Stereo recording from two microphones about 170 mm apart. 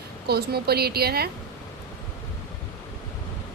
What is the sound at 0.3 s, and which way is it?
A woman's voice, 70° right (ahead or behind).